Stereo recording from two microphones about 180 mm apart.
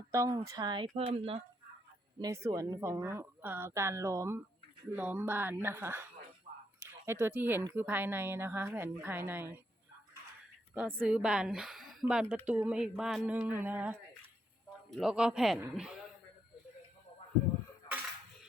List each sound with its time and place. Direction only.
0.1 s speech: 20° right (ahead or behind)
2.2 s speech: 15° right (ahead or behind)
11.0 s a woman's voice: 5° right (ahead or behind)